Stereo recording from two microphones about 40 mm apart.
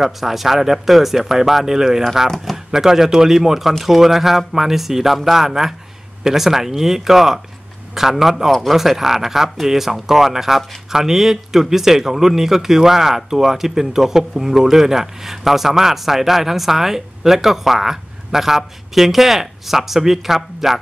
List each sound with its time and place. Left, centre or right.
0.0 s speech: centre
2.2 s speech: centre
2.5 s speech: centre